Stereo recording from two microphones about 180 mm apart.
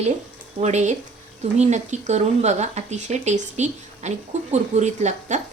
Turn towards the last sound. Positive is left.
turn(degrees=-40)  # may be behind; listen again after turning